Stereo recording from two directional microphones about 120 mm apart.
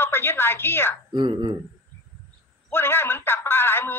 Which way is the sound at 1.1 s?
40° right (ahead or behind).